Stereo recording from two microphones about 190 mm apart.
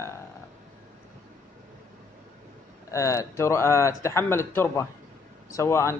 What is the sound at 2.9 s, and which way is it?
Speech, 15° left (ahead or behind).